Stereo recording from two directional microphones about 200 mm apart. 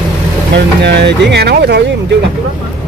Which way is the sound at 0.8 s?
55° right (ahead or behind).